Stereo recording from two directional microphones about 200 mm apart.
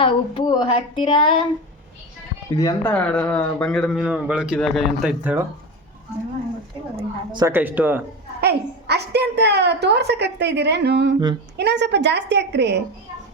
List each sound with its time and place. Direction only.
0.0 s speech: 25° left (ahead or behind)
2.5 s speech: 15° left (ahead or behind); by 5.5 s 10° right (ahead or behind)
6.9 s a woman's voice: 20° right (ahead or behind)
7.5 s speech: 10° right (ahead or behind)
8.4 s a woman's voice: 55° right (ahead or behind)